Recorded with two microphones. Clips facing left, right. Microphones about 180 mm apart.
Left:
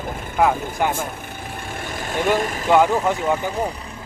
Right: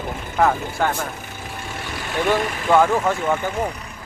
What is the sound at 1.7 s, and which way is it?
Vehicle, 45° left (ahead or behind).